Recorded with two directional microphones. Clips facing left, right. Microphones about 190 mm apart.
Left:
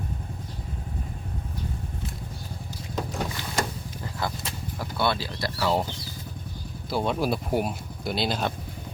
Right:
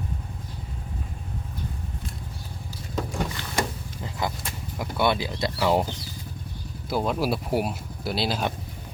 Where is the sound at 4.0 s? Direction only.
15° right (ahead or behind).